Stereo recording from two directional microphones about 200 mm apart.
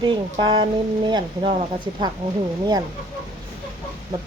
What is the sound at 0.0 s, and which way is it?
Speech, 25° right (ahead or behind).